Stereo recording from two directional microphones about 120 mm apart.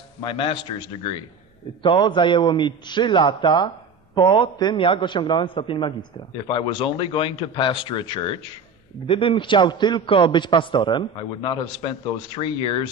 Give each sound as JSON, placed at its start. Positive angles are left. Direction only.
{"t": 0.2, "sound": "a man's voice", "side_deg": 45}